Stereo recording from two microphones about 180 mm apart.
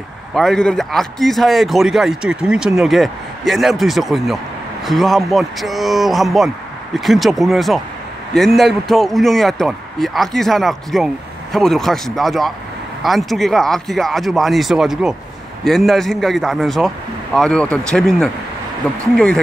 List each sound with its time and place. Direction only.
0.3 s a man's voice: centre (ahead or behind)